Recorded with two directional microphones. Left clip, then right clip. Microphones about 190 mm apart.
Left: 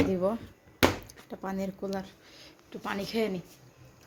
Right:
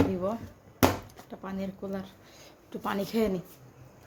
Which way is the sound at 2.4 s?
10° right (ahead or behind).